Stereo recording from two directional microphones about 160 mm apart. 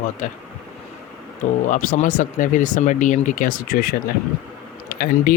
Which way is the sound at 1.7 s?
55° left (ahead or behind).